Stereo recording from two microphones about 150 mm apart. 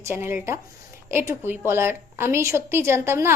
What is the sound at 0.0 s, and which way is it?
A woman's voice, 15° right (ahead or behind).